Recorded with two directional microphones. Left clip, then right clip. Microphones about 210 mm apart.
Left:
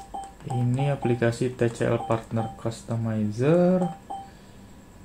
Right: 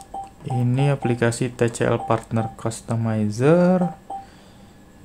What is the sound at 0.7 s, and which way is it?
Speech, 25° right (ahead or behind).